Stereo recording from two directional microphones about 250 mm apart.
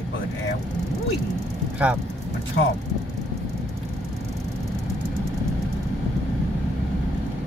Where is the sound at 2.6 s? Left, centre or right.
Left.